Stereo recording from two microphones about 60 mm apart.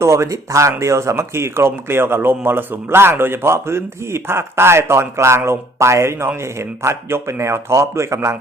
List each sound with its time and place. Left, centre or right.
0.0 s speech: right